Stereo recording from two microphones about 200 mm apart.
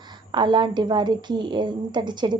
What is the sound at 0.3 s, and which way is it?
A woman's voice, 25° right (ahead or behind).